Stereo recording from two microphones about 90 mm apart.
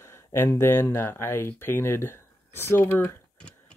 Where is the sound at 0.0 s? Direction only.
30° left (ahead or behind).